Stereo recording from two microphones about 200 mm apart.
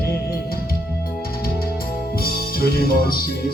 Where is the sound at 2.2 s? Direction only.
45° left (ahead or behind).